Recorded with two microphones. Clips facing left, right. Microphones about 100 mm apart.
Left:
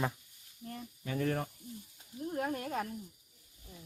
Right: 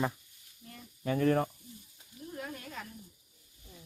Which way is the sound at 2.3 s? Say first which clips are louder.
Left 7 dB; 50° left (ahead or behind).